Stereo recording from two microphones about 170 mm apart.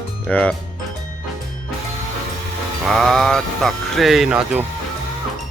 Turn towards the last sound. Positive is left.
turn(degrees=-5)  # may be behind; listen again after turning